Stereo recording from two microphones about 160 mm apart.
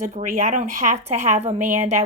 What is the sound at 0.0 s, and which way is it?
Speech, 50° right (ahead or behind).